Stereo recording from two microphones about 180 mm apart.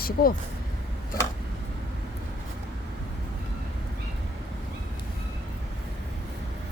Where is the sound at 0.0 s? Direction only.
55° left (ahead or behind).